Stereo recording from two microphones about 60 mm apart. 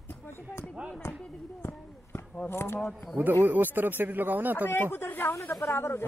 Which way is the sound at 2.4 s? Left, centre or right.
Left.